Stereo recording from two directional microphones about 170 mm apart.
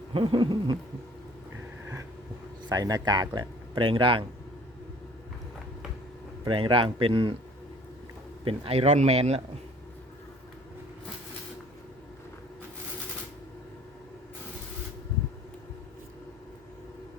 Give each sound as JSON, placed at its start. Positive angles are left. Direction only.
{"t": 0.1, "sound": "speech", "side_deg": -30}
{"t": 2.6, "sound": "speech", "side_deg": -25}
{"t": 6.4, "sound": "speech", "side_deg": -30}
{"t": 8.4, "sound": "speech", "side_deg": -35}